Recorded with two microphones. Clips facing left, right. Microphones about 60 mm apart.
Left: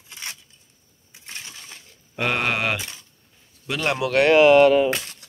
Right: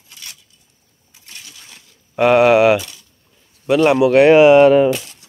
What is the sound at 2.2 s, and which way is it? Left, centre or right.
Speech, centre.